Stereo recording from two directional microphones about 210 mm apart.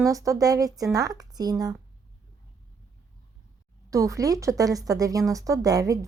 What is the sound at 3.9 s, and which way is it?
A woman's voice, 15° right (ahead or behind).